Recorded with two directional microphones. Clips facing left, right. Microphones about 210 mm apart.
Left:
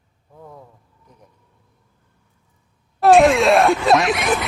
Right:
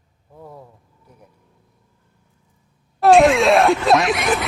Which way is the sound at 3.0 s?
Centre (ahead or behind).